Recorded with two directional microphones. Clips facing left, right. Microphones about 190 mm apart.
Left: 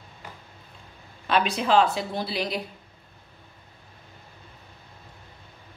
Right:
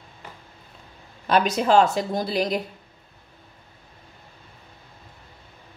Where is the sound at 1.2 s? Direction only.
45° right (ahead or behind).